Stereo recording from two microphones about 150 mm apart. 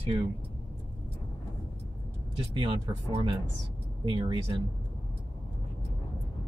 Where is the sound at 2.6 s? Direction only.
35° right (ahead or behind).